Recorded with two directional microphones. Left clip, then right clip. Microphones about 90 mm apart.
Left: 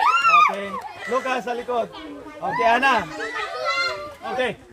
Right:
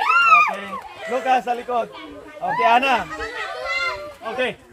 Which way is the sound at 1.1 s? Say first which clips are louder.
Right 4 dB; 25° left (ahead or behind).